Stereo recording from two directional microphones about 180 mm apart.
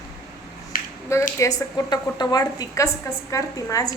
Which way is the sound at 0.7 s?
50° left (ahead or behind).